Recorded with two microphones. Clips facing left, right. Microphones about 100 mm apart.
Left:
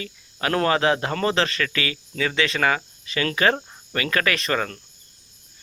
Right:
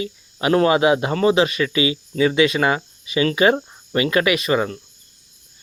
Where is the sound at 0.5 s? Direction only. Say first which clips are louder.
Right 5 dB; 10° right (ahead or behind).